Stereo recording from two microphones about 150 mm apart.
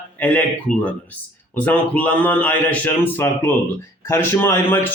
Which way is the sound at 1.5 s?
10° left (ahead or behind).